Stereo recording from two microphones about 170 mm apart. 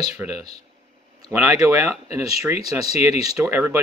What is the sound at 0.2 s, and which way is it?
Speech, 10° right (ahead or behind).